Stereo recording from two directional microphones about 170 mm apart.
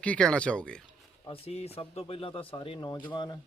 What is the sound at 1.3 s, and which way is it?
A man's voice, 35° left (ahead or behind).